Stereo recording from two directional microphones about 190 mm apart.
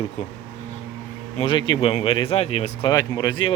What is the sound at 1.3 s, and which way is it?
Speech, 25° left (ahead or behind).